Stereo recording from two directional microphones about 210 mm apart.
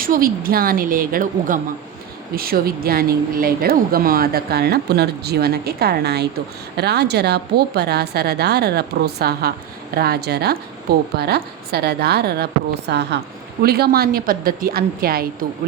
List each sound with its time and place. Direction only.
0.0 s a woman's voice: 40° right (ahead or behind)